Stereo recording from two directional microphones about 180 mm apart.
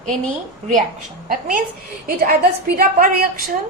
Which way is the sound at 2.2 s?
55° right (ahead or behind).